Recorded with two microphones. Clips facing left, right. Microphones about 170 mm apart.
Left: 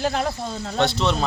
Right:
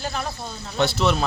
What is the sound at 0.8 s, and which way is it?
Speech, 5° right (ahead or behind).